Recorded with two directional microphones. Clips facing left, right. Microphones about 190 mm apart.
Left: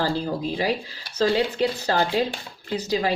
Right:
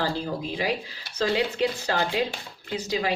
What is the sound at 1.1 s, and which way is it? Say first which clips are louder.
Speech: left 3 dB; 35° left (ahead or behind).